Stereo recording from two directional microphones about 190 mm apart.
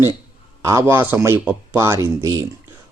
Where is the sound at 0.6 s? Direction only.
15° right (ahead or behind).